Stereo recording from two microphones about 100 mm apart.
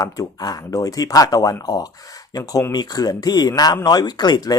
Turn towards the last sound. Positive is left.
turn(degrees=40)  # may be behind; listen again after turning